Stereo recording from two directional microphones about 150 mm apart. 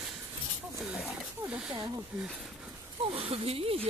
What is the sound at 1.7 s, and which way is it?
Snake, 25° right (ahead or behind).